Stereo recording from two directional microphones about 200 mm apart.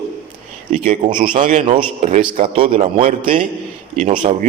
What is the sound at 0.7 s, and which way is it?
A man's voice, 40° right (ahead or behind).